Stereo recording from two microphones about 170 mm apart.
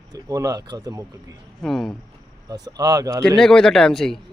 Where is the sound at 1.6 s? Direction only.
Centre (ahead or behind).